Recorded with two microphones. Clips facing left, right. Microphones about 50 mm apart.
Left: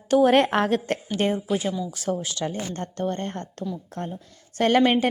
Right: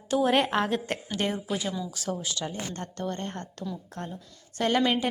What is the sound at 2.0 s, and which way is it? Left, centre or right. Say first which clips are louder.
Speech: left 5 dB; left.